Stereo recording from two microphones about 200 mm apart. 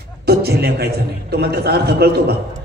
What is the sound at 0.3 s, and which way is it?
A man's voice, 55° right (ahead or behind).